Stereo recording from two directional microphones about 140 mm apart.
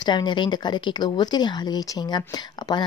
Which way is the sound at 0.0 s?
30° left (ahead or behind).